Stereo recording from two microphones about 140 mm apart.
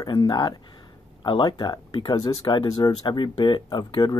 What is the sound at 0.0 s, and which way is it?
Speech, 30° left (ahead or behind).